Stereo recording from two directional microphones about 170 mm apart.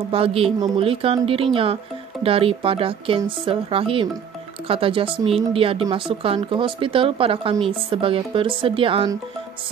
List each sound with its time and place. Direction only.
0.1 s speech: 35° right (ahead or behind)